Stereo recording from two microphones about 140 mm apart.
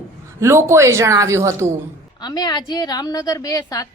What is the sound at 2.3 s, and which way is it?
A woman's voice, 30° left (ahead or behind).